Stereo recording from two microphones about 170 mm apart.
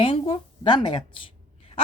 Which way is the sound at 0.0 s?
30° left (ahead or behind).